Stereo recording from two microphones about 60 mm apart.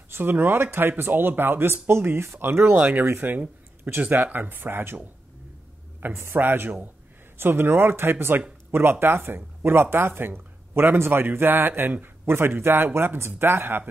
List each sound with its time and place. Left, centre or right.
0.1 s speech: right
2.8 s speech: right
6.1 s speech: right
6.4 s speech: right